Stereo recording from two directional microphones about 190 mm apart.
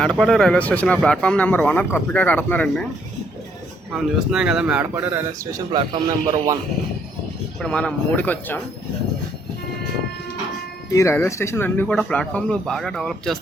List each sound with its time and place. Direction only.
0.0 s speech: 5° left (ahead or behind)
3.9 s speech: 5° right (ahead or behind)
5.7 s a man's voice: 25° right (ahead or behind)
7.6 s speech: 5° left (ahead or behind)
10.9 s speech: 15° left (ahead or behind)